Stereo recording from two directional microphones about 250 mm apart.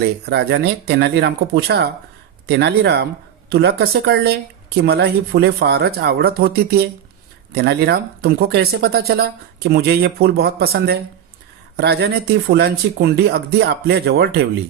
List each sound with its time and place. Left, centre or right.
0.0 s speech: right